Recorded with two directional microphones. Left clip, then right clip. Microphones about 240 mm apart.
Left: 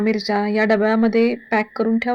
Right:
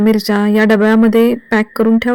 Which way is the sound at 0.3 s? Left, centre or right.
Right.